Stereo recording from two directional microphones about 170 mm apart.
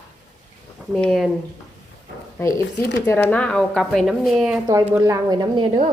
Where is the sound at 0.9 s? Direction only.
Centre (ahead or behind).